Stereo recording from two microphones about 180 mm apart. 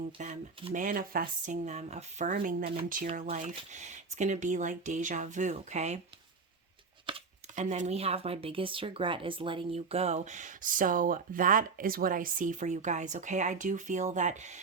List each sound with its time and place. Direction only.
0.2 s speech: 40° right (ahead or behind)
3.1 s speech: 35° right (ahead or behind)
7.5 s speech: 40° right (ahead or behind)